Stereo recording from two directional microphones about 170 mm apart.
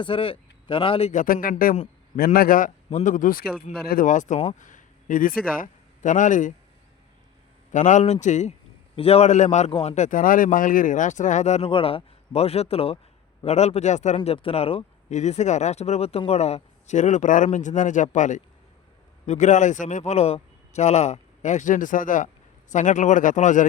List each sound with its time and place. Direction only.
0.0 s speech: 30° left (ahead or behind)
1.1 s a man's voice: 55° left (ahead or behind)
7.7 s a man's voice: 45° left (ahead or behind)
14.2 s a man's voice: 30° left (ahead or behind)